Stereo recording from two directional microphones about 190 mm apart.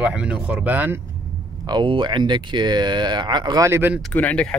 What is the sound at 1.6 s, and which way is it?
Speech, 25° right (ahead or behind).